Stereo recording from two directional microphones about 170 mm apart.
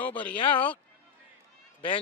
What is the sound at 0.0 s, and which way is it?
Speech, 10° left (ahead or behind).